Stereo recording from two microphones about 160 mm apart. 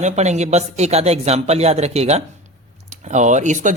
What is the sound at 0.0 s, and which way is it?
Speech, 45° right (ahead or behind).